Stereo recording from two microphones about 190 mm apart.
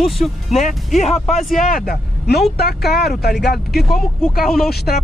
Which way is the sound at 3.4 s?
55° left (ahead or behind).